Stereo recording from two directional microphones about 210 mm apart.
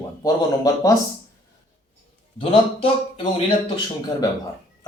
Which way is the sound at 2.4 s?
25° left (ahead or behind).